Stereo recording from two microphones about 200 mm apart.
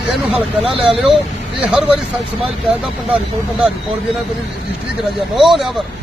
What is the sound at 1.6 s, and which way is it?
Speech, 5° right (ahead or behind).